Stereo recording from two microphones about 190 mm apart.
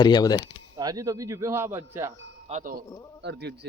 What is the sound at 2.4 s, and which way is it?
Speech, 40° right (ahead or behind).